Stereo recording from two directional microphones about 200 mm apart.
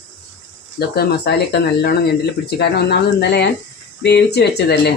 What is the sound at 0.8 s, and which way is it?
Speech, 55° left (ahead or behind).